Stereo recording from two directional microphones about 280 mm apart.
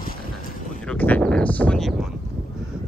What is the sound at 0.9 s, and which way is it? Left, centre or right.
Speech, centre.